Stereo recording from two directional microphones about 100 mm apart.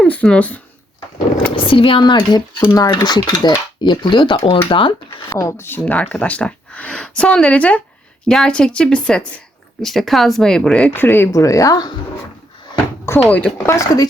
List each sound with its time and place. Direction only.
0.1 s a woman's voice: 15° left (ahead or behind)
1.5 s speech: 60° left (ahead or behind)
5.3 s speech: 30° left (ahead or behind)
5.8 s a woman's voice: 15° left (ahead or behind)
10.9 s speech: 20° left (ahead or behind)
13.1 s speech: 15° left (ahead or behind)
13.7 s speech: 35° left (ahead or behind)